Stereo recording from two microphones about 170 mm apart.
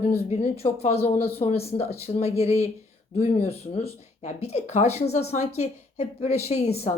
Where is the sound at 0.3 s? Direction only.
40° left (ahead or behind).